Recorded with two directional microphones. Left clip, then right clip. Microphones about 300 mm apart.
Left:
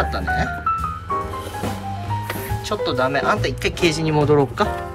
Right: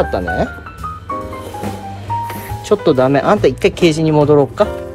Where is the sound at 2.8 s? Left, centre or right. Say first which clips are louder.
Right 6 dB; centre.